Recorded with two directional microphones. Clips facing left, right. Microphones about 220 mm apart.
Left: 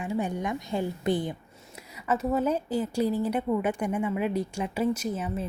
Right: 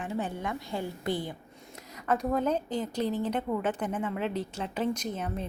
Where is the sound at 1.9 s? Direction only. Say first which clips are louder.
Left 2 dB; 5° left (ahead or behind).